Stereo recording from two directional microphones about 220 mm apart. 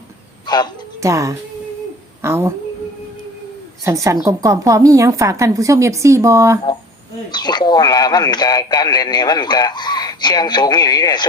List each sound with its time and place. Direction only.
0.4 s music: 20° left (ahead or behind)
0.9 s a woman's voice: 15° right (ahead or behind)
3.8 s a woman's voice: 15° right (ahead or behind)
7.3 s speech: 20° left (ahead or behind)